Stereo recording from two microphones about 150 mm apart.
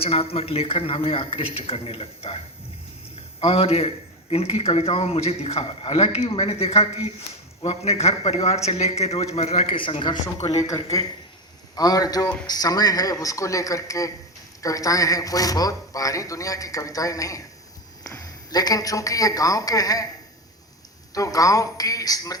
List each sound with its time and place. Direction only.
0.0 s a man's voice: 40° left (ahead or behind)
3.4 s a man's voice: 40° left (ahead or behind)
11.7 s a man's voice: 25° left (ahead or behind)
21.1 s a man's voice: 25° left (ahead or behind)